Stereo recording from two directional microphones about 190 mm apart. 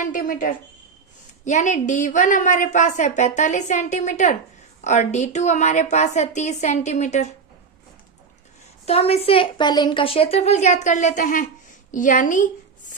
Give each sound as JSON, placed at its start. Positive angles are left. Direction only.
{"t": 0.0, "sound": "a woman's voice", "side_deg": 45}
{"t": 8.9, "sound": "a woman's voice", "side_deg": 30}